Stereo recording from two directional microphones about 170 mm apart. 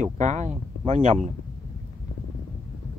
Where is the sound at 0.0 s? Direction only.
45° right (ahead or behind).